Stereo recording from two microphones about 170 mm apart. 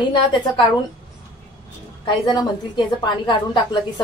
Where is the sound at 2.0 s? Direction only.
25° left (ahead or behind).